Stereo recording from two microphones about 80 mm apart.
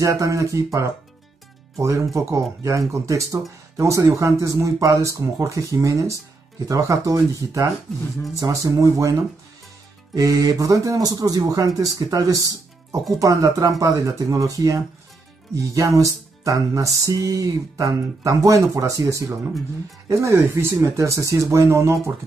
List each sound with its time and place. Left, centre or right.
0.0 s speech: right
10.1 s speech: right